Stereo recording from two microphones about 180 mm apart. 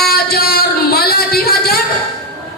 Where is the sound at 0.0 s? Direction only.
60° left (ahead or behind).